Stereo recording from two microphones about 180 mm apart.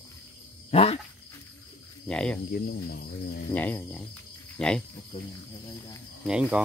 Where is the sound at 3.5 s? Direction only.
10° left (ahead or behind).